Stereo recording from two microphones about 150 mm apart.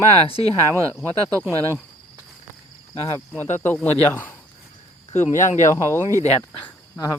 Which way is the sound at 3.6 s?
15° left (ahead or behind).